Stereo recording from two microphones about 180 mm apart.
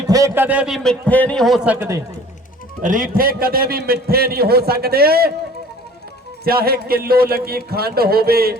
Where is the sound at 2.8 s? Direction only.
50° right (ahead or behind).